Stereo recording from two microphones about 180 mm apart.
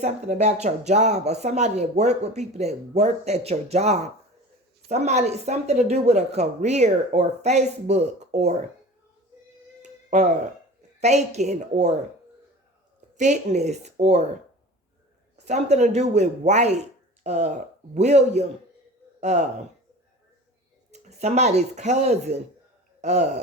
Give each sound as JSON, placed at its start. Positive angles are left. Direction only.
{"t": 0.0, "sound": "speech", "side_deg": -40}
{"t": 9.8, "sound": "cat", "side_deg": -40}
{"t": 11.0, "sound": "speech", "side_deg": -40}
{"t": 13.1, "sound": "speech", "side_deg": -40}
{"t": 15.4, "sound": "speech", "side_deg": -40}
{"t": 20.9, "sound": "speech", "side_deg": -40}